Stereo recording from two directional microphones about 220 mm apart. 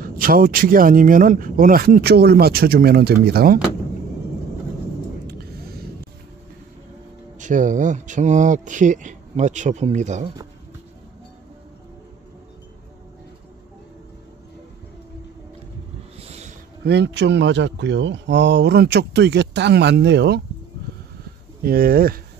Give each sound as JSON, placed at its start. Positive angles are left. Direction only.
{"t": 0.0, "sound": "speech", "side_deg": -40}
{"t": 7.3, "sound": "speech", "side_deg": -35}
{"t": 16.2, "sound": "a sound", "side_deg": -30}
{"t": 16.8, "sound": "speech", "side_deg": -50}
{"t": 21.6, "sound": "speech", "side_deg": -40}